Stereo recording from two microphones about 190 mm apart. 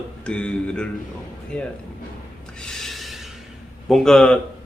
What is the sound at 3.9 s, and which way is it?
Speech, centre (ahead or behind).